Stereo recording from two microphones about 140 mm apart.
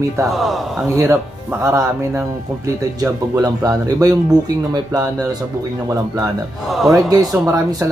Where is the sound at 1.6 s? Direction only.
20° right (ahead or behind).